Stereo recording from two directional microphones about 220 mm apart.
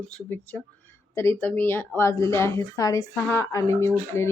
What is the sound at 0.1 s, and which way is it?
Speech, 5° left (ahead or behind).